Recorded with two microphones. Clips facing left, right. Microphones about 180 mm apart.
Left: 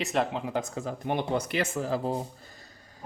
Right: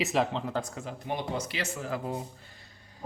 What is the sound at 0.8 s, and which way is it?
Speech, 55° left (ahead or behind).